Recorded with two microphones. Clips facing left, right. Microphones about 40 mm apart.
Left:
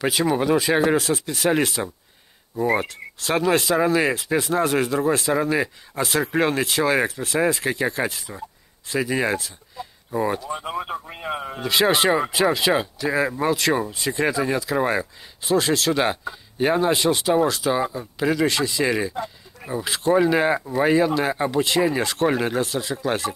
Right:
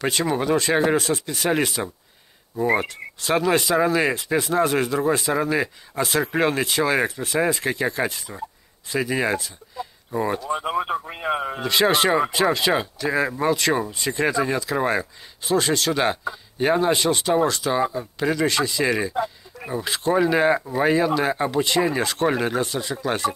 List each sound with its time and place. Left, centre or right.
0.0 s speech: centre
10.6 s a man's voice: centre
11.6 s speech: centre